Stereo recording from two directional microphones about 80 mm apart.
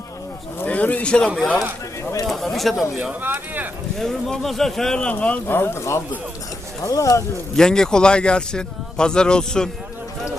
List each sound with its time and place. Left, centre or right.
0.6 s speech: centre
2.2 s speech: centre
3.0 s speech: right
3.9 s speech: centre
5.5 s speech: left
7.5 s speech: centre